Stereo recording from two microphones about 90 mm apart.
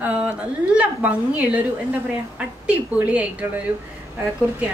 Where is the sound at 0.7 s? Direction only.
15° right (ahead or behind).